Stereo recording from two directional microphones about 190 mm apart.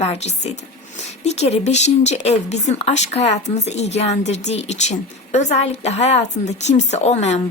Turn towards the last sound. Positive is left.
turn(degrees=35)  # may be behind; listen again after turning